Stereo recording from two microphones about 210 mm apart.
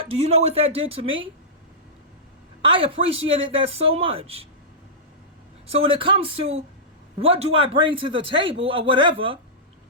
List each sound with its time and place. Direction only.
0.0 s a man's voice: 30° right (ahead or behind)
2.6 s a man's voice: 25° right (ahead or behind)
5.6 s a man's voice: 25° right (ahead or behind)